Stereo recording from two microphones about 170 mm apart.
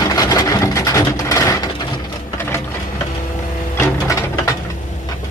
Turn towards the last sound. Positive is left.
turn(degrees=20)  # may be behind; listen again after turning